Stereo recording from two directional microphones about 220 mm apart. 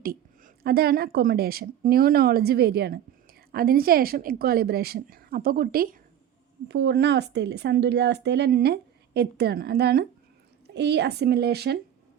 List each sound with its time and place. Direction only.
0.0 s speech: 40° right (ahead or behind)
6.7 s speech: 50° right (ahead or behind)